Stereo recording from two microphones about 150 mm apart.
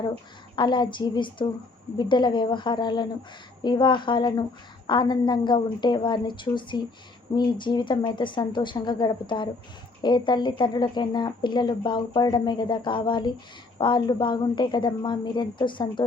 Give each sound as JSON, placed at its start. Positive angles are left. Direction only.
{"t": 0.5, "sound": "a woman's voice", "side_deg": 30}